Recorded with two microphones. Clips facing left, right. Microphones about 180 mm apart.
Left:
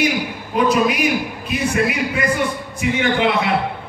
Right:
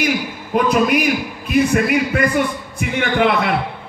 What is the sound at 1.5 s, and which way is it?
A man's voice, 55° right (ahead or behind).